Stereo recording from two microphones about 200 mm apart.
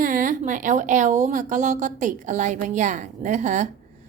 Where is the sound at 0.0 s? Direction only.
40° right (ahead or behind).